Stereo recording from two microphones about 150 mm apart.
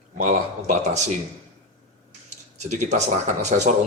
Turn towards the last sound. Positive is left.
turn(degrees=-55)  # may be behind; listen again after turning